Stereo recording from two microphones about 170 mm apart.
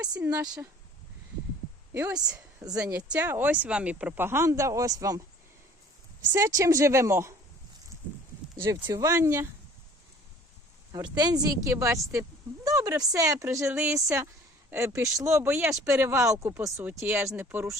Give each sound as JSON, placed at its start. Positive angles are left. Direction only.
{"t": 0.0, "sound": "speech", "side_deg": -5}
{"t": 0.3, "sound": "a woman's voice", "side_deg": -20}
{"t": 1.9, "sound": "speech", "side_deg": -10}
{"t": 6.3, "sound": "speech", "side_deg": -20}
{"t": 8.5, "sound": "speech", "side_deg": -15}
{"t": 10.9, "sound": "a woman's voice", "side_deg": -25}